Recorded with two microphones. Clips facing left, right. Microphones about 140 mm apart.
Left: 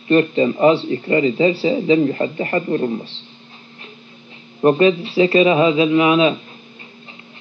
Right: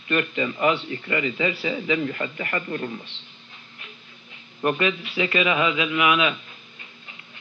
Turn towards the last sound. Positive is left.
turn(degrees=30)  # may be behind; listen again after turning